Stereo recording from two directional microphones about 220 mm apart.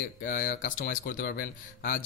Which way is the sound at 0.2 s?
40° left (ahead or behind).